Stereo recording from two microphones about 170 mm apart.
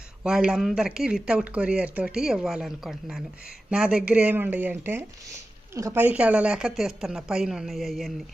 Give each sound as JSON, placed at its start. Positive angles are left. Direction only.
{"t": 0.2, "sound": "speech", "side_deg": -5}